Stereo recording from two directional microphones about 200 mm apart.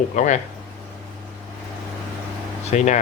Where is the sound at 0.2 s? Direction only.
35° left (ahead or behind).